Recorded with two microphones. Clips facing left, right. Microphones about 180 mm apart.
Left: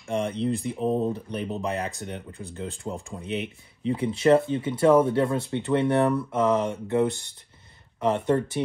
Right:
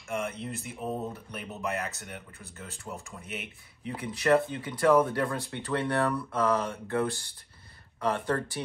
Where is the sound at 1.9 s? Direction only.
20° left (ahead or behind).